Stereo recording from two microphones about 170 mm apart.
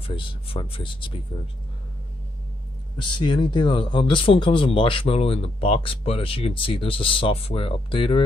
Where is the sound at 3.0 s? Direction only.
30° left (ahead or behind).